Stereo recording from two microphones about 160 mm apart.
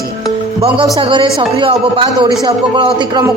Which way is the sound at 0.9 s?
30° right (ahead or behind).